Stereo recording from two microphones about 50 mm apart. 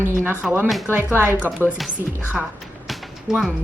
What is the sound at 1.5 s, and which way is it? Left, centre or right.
Speech, right.